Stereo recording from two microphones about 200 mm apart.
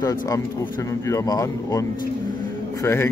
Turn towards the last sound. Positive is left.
turn(degrees=15)  # may be behind; listen again after turning